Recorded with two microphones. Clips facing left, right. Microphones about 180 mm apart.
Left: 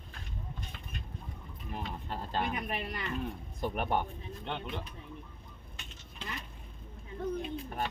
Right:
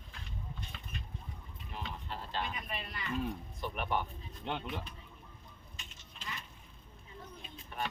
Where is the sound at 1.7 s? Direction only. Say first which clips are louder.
Left 4 dB; 45° left (ahead or behind).